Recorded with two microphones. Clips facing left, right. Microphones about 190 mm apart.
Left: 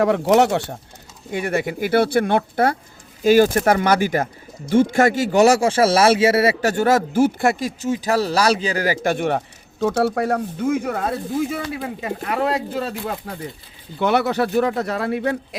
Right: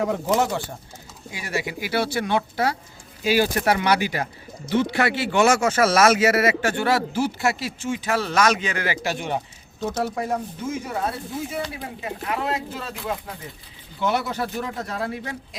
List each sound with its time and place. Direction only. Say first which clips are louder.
0.0 s speech: left 6 dB; 70° left (ahead or behind)
1.3 s speech: left 7 dB; 55° left (ahead or behind); by 9.1 s 40° left (ahead or behind)
9.1 s speech: left 6 dB; 60° left (ahead or behind)
14.0 s speech: left 6 dB; 65° left (ahead or behind)